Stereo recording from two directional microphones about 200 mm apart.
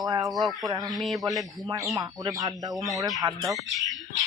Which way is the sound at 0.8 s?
Centre (ahead or behind).